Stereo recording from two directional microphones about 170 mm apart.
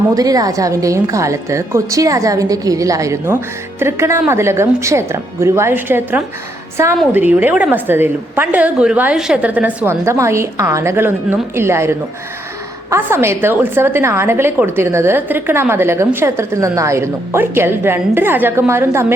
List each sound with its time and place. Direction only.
0.1 s a woman's voice: 20° right (ahead or behind)